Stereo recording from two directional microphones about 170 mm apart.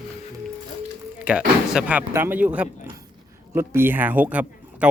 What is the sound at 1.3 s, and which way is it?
Speech, 5° right (ahead or behind).